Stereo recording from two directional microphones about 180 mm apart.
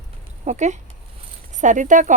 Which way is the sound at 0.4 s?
40° right (ahead or behind).